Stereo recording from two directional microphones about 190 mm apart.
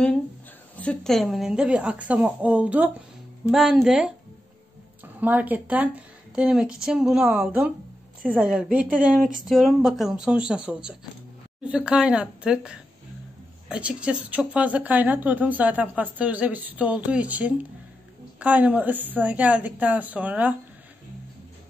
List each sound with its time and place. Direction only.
0.7 s a woman's voice: 5° left (ahead or behind)